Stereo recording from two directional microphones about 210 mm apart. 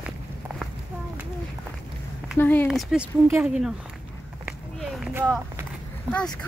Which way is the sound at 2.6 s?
5° right (ahead or behind).